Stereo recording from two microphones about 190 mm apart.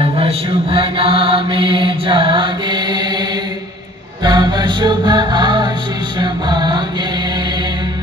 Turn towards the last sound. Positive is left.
turn(degrees=-25)  # may be behind; listen again after turning